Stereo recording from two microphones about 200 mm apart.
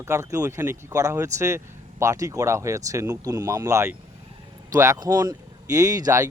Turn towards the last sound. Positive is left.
turn(degrees=-15)  # may be behind; listen again after turning